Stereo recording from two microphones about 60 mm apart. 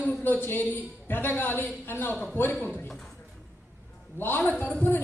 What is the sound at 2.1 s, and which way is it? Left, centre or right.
Speech, left.